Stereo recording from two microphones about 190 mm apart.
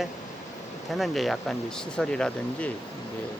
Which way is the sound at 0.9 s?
Centre (ahead or behind).